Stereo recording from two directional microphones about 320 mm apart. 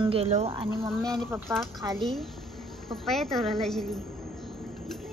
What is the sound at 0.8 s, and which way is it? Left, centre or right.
Speech, centre.